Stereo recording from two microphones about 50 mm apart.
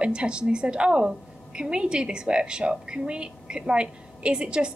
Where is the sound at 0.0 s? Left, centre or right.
Right.